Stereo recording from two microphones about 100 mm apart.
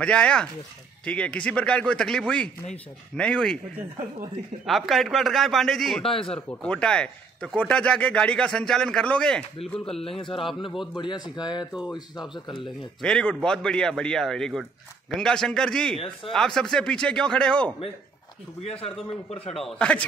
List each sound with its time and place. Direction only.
0.0 s speech: 10° left (ahead or behind)
4.6 s a man's voice: centre (ahead or behind)
6.0 s speech: 70° left (ahead or behind)
6.6 s speech: 10° left (ahead or behind)
10.0 s a man's voice: 65° left (ahead or behind)
11.0 s speech: 50° left (ahead or behind)
13.0 s speech: 10° left (ahead or behind)
18.6 s a man's voice: 90° left
19.5 s a man's voice: centre (ahead or behind)